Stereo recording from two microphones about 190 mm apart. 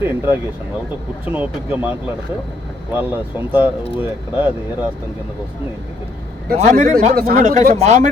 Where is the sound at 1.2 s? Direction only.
10° right (ahead or behind).